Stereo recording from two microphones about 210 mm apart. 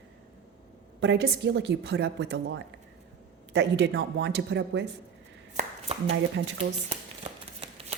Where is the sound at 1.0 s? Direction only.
55° right (ahead or behind).